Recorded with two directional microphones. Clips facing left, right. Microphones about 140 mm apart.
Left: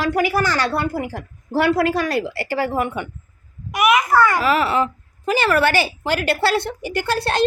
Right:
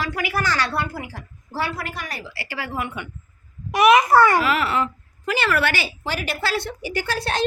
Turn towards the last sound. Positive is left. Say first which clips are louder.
# left 4 dB
turn(degrees=60)  # may be behind; listen again after turning